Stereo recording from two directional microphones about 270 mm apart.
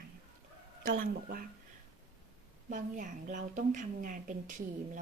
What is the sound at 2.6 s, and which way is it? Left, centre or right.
A woman's voice, right.